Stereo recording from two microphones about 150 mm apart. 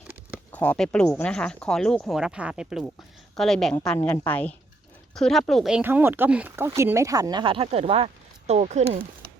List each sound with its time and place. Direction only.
0.5 s speech: 10° left (ahead or behind)
5.8 s speech: 15° right (ahead or behind); by 9.0 s 45° right (ahead or behind)